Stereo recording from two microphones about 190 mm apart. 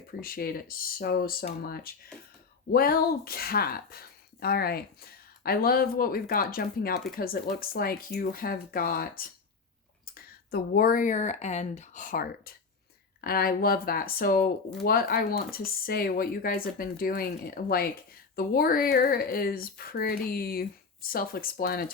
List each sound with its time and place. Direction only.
0.1 s speech: 50° left (ahead or behind)